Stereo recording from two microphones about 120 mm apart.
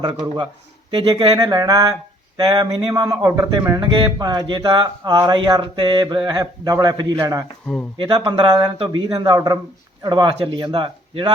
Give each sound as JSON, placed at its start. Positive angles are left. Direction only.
{"t": 0.0, "sound": "speech", "side_deg": -35}
{"t": 0.9, "sound": "speech", "side_deg": -50}
{"t": 1.4, "sound": "speech", "side_deg": -30}
{"t": 3.8, "sound": "speech", "side_deg": -45}
{"t": 7.9, "sound": "speech", "side_deg": -40}